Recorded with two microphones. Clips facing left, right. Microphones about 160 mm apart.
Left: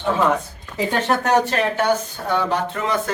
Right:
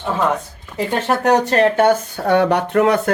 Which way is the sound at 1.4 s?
50° right (ahead or behind).